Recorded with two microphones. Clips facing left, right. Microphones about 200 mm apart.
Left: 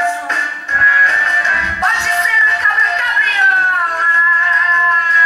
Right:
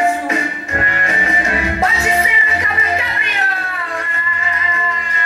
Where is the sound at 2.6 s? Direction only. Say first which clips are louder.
Right 2 dB; 5° right (ahead or behind).